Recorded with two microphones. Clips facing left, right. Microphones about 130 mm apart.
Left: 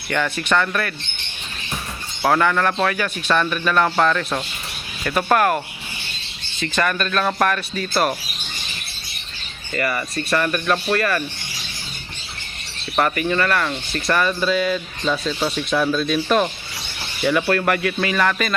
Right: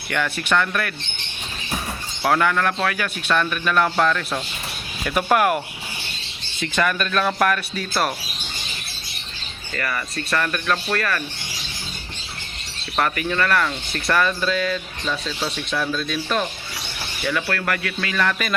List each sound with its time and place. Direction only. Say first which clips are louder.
0.1 s speech: left 2 dB; centre (ahead or behind)
2.2 s speech: left 2 dB; centre (ahead or behind)
6.6 s speech: left 1 dB; 5° right (ahead or behind)
9.7 s speech: left 4 dB; 10° left (ahead or behind)
13.0 s speech: left 2 dB; 5° left (ahead or behind)
17.2 s speech: left 6 dB; 20° left (ahead or behind)
18.2 s speech: left 1 dB; centre (ahead or behind)